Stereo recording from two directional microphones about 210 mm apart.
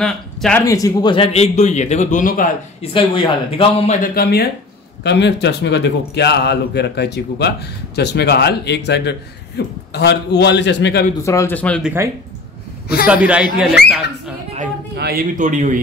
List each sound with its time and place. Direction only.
0.0 s speech: 5° left (ahead or behind)
0.7 s a man's voice: 15° left (ahead or behind); by 2.9 s 40° left (ahead or behind)
2.9 s speech: 25° left (ahead or behind)
4.0 s a man's voice: 45° left (ahead or behind)
11.2 s speech: 10° left (ahead or behind)
13.0 s a man's voice: 5° right (ahead or behind)
15.0 s speech: 45° right (ahead or behind)